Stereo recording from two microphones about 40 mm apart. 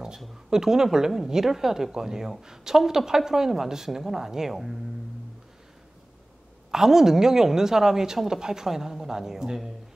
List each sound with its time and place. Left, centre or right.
0.5 s a woman's voice: centre
6.7 s a woman's voice: centre